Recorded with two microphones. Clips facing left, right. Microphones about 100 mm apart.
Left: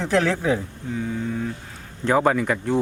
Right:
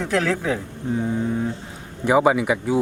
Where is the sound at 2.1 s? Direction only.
10° right (ahead or behind).